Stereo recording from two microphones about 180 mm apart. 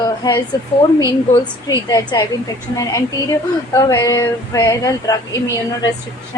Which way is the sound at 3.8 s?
20° left (ahead or behind).